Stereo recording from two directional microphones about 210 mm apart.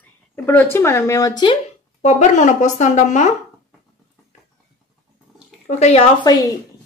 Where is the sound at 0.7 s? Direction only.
10° left (ahead or behind).